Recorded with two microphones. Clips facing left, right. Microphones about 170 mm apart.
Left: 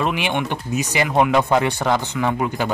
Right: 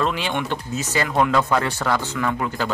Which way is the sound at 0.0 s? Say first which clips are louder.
Left 2 dB; 15° left (ahead or behind).